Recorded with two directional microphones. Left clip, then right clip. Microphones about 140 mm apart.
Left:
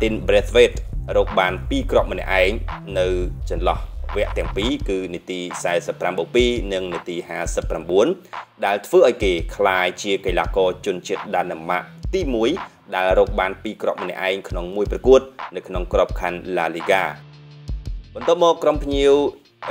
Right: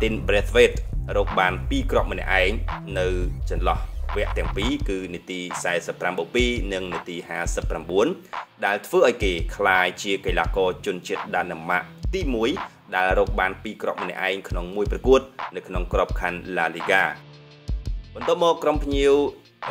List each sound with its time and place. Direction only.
0.0 s speech: 30° left (ahead or behind)
4.1 s a sound: centre (ahead or behind)
4.6 s speech: 30° left (ahead or behind)
18.3 s speech: 30° left (ahead or behind)